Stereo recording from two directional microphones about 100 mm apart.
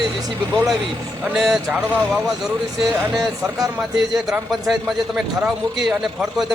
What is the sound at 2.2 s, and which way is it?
Speech, centre (ahead or behind).